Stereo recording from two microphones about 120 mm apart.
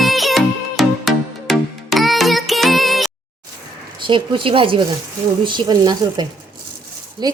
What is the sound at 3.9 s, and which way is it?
A woman's voice, 45° right (ahead or behind).